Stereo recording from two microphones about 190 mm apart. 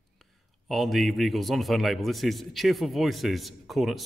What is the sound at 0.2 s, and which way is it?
A man's voice, centre (ahead or behind).